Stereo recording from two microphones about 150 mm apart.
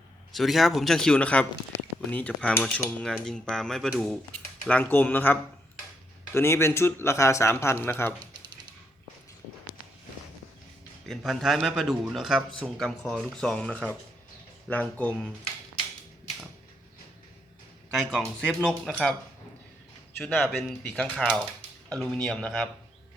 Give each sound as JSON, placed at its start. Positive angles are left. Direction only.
{"t": 0.3, "sound": "a man's voice", "side_deg": 0}
{"t": 11.1, "sound": "a man's voice", "side_deg": 0}
{"t": 18.1, "sound": "a man's voice", "side_deg": 0}
{"t": 20.1, "sound": "a man's voice", "side_deg": 5}